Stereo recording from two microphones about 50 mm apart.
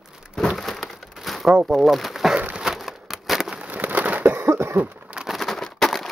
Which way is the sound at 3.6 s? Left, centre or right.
Right.